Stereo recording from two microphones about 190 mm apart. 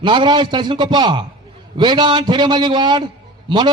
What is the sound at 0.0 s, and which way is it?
A man's voice, 25° right (ahead or behind).